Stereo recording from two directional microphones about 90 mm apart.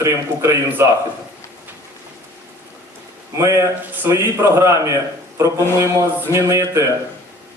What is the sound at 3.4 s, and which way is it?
A man's voice, 35° right (ahead or behind).